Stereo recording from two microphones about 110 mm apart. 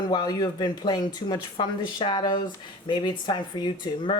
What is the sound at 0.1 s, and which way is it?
Speech, 40° left (ahead or behind).